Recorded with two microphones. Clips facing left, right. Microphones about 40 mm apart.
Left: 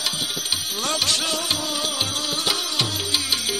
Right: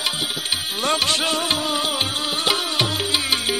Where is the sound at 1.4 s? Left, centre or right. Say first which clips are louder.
Right 4 dB; right.